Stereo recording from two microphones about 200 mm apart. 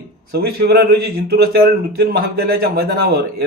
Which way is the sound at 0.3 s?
50° right (ahead or behind).